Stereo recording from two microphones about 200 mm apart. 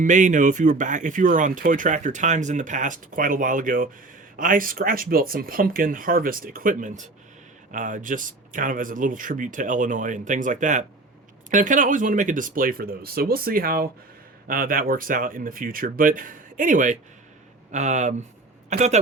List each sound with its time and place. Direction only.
0.0 s speech: 40° right (ahead or behind)